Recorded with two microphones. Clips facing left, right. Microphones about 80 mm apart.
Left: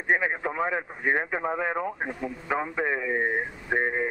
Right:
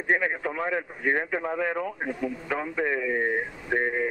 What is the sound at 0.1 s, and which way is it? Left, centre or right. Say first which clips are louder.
Speech: even; centre.